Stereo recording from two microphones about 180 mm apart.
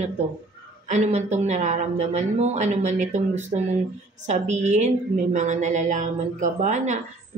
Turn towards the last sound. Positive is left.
turn(degrees=-40)  # may be behind; listen again after turning